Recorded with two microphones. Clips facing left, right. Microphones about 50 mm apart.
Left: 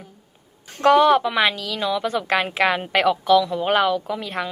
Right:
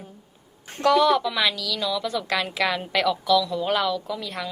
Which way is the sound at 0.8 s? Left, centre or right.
Left.